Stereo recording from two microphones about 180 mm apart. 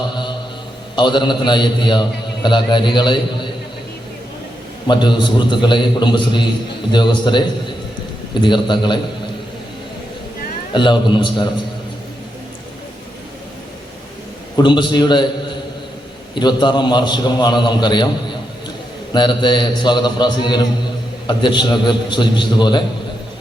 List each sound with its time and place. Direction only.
0.9 s a man's voice: 25° left (ahead or behind)
4.9 s a man's voice: 25° left (ahead or behind)
10.8 s a man's voice: 25° left (ahead or behind)
14.5 s a man's voice: 25° left (ahead or behind)